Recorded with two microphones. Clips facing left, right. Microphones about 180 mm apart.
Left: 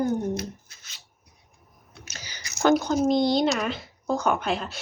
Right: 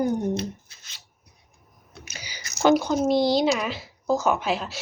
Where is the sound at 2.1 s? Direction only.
10° right (ahead or behind).